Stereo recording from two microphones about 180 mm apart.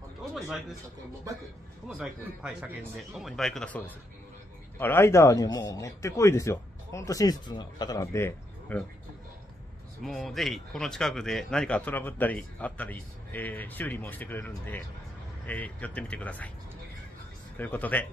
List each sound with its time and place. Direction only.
0.2 s a sound: centre (ahead or behind)
1.9 s speech: 5° right (ahead or behind)
10.0 s speech: centre (ahead or behind)
17.6 s speech: 10° left (ahead or behind)